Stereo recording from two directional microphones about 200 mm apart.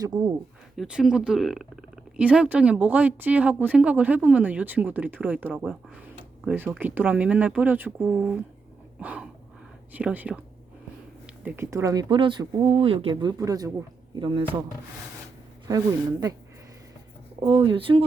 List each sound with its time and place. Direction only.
0.0 s speech: 20° right (ahead or behind)
0.8 s speech: 5° right (ahead or behind)
9.0 s a sound: 5° right (ahead or behind)
9.9 s speech: 5° right (ahead or behind)
11.4 s speech: 10° right (ahead or behind)
17.4 s speech: 30° right (ahead or behind)